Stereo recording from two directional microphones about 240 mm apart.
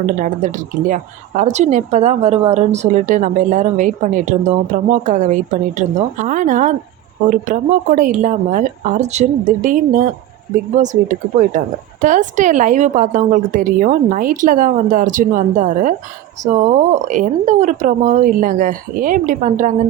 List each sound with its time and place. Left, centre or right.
0.2 s a woman's voice: right
12.0 s a woman's voice: right